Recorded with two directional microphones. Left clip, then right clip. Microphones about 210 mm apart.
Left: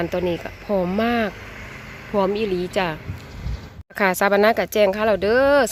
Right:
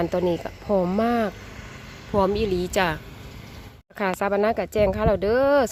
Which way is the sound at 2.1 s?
Centre (ahead or behind).